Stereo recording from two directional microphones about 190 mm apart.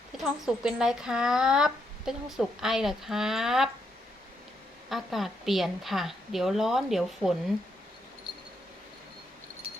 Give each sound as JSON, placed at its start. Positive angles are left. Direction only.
{"t": 0.2, "sound": "speech", "side_deg": -5}
{"t": 4.9, "sound": "speech", "side_deg": 0}